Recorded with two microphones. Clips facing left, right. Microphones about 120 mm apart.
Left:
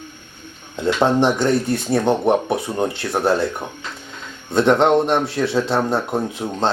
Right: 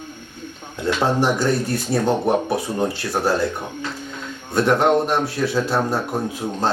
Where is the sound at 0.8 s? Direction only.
20° left (ahead or behind).